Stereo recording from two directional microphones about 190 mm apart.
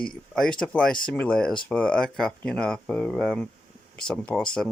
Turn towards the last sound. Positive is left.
turn(degrees=5)  # may be behind; listen again after turning